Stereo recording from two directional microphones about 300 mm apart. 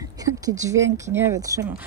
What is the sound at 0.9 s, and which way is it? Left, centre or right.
Speech, centre.